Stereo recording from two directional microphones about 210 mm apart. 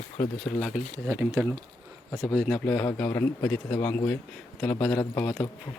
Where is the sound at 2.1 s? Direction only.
5° left (ahead or behind).